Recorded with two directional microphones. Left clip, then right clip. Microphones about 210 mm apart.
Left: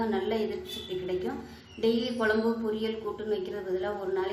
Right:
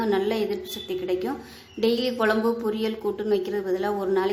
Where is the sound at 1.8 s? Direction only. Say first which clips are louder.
Right 5 dB; 55° right (ahead or behind).